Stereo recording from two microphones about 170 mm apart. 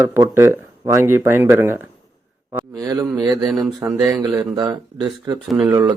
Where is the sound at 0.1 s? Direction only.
15° right (ahead or behind).